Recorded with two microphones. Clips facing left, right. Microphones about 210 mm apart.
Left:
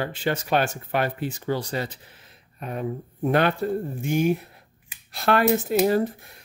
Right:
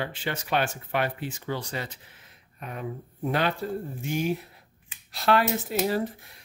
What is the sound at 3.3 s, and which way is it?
A man's voice, 55° left (ahead or behind).